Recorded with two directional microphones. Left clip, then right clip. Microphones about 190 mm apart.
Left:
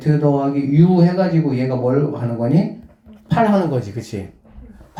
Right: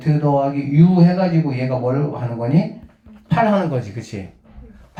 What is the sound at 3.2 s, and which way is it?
Speech, 20° left (ahead or behind).